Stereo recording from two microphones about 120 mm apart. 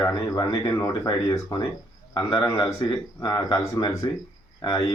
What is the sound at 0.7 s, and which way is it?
Speech, 20° left (ahead or behind).